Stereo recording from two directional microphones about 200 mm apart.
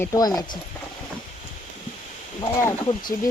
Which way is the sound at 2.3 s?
20° left (ahead or behind).